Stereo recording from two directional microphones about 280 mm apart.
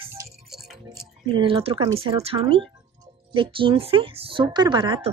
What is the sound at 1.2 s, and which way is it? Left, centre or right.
Speech, centre.